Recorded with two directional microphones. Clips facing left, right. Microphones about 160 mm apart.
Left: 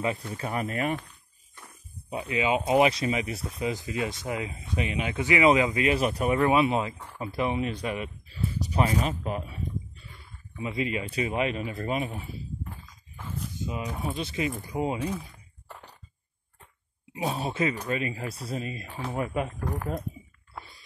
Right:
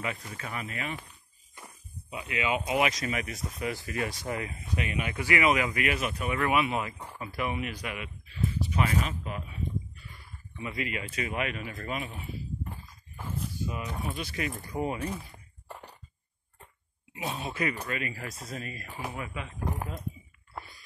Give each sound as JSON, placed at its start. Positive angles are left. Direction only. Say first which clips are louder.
{"t": 0.4, "sound": "speech", "louder": "left 8 dB", "side_deg": 45}
{"t": 2.1, "sound": "speech", "louder": "left 4 dB", "side_deg": 30}
{"t": 10.6, "sound": "speech", "louder": "left 5 dB", "side_deg": 30}
{"t": 12.6, "sound": "a sound", "louder": "right 1 dB", "side_deg": 0}
{"t": 13.6, "sound": "a sound", "louder": "left 4 dB", "side_deg": 20}
{"t": 14.0, "sound": "speech", "louder": "left 6 dB", "side_deg": 25}
{"t": 17.2, "sound": "speech", "louder": "left 5 dB", "side_deg": 35}
{"t": 19.1, "sound": "speech", "louder": "left 9 dB", "side_deg": 45}
{"t": 19.6, "sound": "speech", "louder": "left 2 dB", "side_deg": -20}
{"t": 20.5, "sound": "a sound", "louder": "right 1 dB", "side_deg": 0}